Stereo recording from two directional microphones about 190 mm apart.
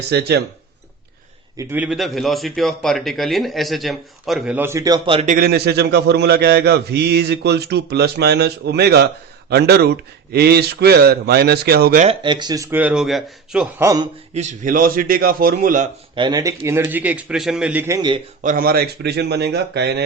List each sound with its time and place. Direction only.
0.1 s a man's voice: 60° right (ahead or behind)
1.5 s a man's voice: 10° right (ahead or behind); by 5.3 s 25° right (ahead or behind)
5.3 s a man's voice: 55° right (ahead or behind)
12.0 s speech: 25° right (ahead or behind); by 13.8 s 5° right (ahead or behind)
13.8 s a man's voice: 20° right (ahead or behind)
14.3 s a man's voice: 40° right (ahead or behind)
16.1 s speech: 20° right (ahead or behind)
18.4 s a man's voice: 50° right (ahead or behind)